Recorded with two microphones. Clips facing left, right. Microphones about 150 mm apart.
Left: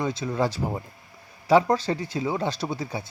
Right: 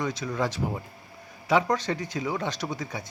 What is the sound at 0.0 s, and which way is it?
A man's voice, 30° left (ahead or behind).